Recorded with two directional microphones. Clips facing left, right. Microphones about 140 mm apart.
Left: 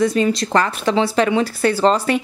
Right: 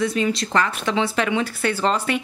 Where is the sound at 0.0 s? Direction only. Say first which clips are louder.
Left 5 dB; 40° left (ahead or behind).